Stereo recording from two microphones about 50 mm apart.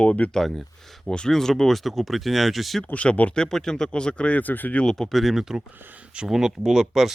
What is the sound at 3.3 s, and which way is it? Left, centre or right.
Speech, centre.